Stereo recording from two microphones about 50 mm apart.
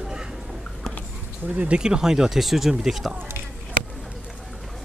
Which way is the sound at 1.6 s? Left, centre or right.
Right.